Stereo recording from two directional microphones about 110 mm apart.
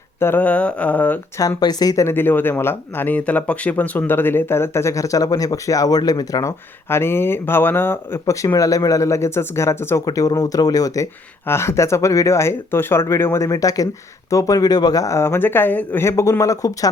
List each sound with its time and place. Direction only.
0.2 s a sound: 20° left (ahead or behind)
1.4 s speech: 35° left (ahead or behind)
6.9 s speech: 20° left (ahead or behind)